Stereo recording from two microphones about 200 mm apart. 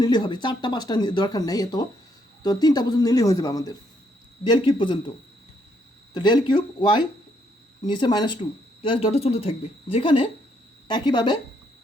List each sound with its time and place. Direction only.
0.0 s speech: 20° left (ahead or behind)
6.1 s speech: 20° left (ahead or behind)